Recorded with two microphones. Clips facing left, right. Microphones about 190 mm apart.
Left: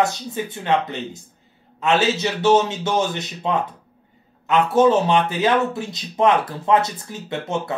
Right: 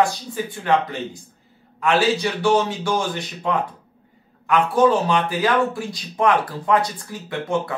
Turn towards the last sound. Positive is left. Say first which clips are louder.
# right 1 dB
turn(degrees=25)  # may be behind; listen again after turning